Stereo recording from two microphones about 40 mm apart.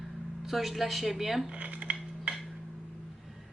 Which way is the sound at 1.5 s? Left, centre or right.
Right.